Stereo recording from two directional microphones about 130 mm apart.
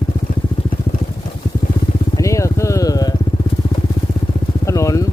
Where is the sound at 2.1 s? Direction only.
25° left (ahead or behind).